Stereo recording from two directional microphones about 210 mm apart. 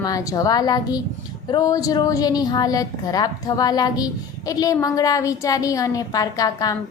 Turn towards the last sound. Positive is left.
turn(degrees=15)  # may be behind; listen again after turning